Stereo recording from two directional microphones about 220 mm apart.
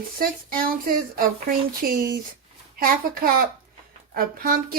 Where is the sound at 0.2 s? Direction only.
40° right (ahead or behind).